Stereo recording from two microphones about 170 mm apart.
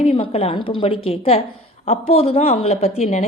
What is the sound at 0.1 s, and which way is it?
Speech, 35° left (ahead or behind).